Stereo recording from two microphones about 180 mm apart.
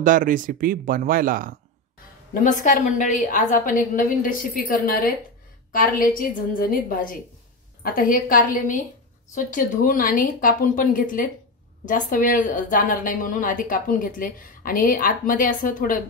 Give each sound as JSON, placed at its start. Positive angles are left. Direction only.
{"t": 0.0, "sound": "speech", "side_deg": -50}
{"t": 2.3, "sound": "a woman's voice", "side_deg": 45}